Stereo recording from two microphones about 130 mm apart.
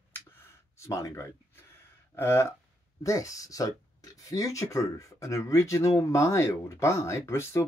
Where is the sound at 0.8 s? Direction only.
25° left (ahead or behind).